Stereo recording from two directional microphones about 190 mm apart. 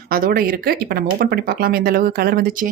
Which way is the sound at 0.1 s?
50° right (ahead or behind).